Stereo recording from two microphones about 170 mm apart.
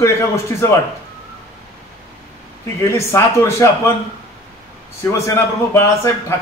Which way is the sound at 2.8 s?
15° left (ahead or behind).